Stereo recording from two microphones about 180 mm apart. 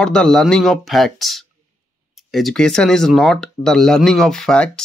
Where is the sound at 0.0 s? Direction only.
5° left (ahead or behind).